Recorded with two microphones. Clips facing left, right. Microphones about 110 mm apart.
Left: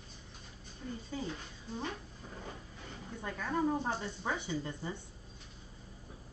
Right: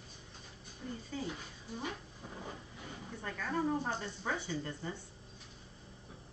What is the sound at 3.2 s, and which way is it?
Speech, 15° left (ahead or behind).